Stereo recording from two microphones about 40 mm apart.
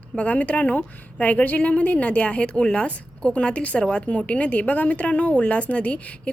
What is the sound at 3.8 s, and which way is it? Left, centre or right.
Speech, left.